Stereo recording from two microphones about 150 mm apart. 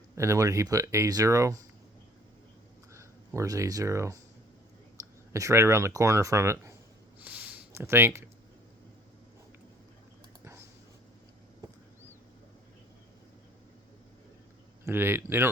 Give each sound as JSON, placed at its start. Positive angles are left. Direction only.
{"t": 0.2, "sound": "speech", "side_deg": -20}
{"t": 2.9, "sound": "speech", "side_deg": -20}
{"t": 5.3, "sound": "speech", "side_deg": -20}
{"t": 7.2, "sound": "a sound", "side_deg": -10}
{"t": 14.8, "sound": "speech", "side_deg": -15}